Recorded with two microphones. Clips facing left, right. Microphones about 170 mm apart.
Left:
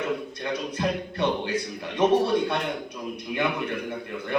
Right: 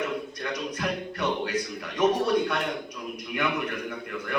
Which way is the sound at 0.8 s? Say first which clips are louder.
Left 5 dB; 30° left (ahead or behind).